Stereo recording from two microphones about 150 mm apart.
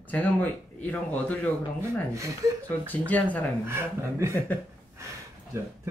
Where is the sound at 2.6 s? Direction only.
10° left (ahead or behind).